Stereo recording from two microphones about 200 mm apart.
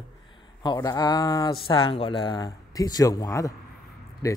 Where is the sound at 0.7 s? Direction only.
20° left (ahead or behind).